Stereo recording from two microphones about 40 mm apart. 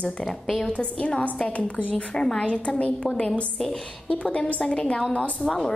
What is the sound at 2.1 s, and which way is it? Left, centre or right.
Speech, centre.